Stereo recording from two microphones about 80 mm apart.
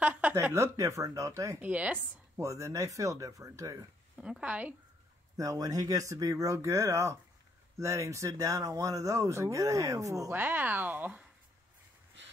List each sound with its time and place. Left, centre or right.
0.0 s speech: centre; by 1.6 s right
1.6 s speech: centre
2.3 s speech: right
4.2 s speech: centre
5.4 s speech: right
10.3 s speech: right